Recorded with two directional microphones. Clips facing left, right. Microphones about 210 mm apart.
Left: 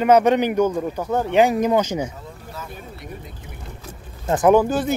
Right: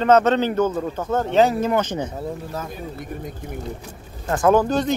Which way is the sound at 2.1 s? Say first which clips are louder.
Right 9 dB; 45° right (ahead or behind).